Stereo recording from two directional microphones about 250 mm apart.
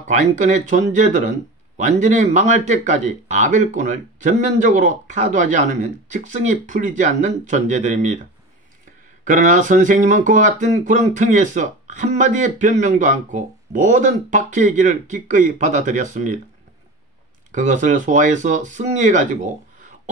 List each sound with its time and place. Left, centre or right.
0.0 s speech: right
9.2 s speech: right
17.5 s speech: right